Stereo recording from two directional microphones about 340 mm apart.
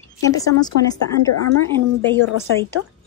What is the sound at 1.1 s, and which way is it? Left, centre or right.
Speech, left.